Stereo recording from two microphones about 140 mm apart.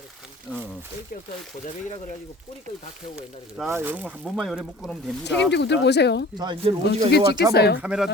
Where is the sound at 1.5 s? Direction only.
65° left (ahead or behind).